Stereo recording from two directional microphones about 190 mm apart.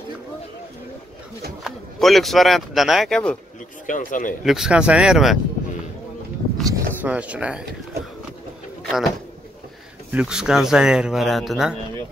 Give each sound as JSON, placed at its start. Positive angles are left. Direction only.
{"t": 1.6, "sound": "speech", "side_deg": 0}
{"t": 3.8, "sound": "a man's voice", "side_deg": 45}
{"t": 4.5, "sound": "speech", "side_deg": -5}
{"t": 6.6, "sound": "a sound", "side_deg": -10}
{"t": 8.8, "sound": "a sound", "side_deg": 0}
{"t": 10.1, "sound": "speech", "side_deg": -5}